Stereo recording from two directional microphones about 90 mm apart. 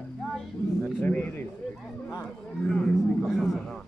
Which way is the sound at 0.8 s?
20° left (ahead or behind).